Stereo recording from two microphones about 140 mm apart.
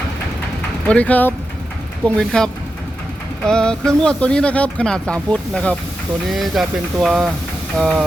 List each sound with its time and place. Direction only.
0.9 s speech: 10° left (ahead or behind)